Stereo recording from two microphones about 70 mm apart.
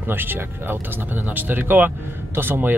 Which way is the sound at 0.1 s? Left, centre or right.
Right.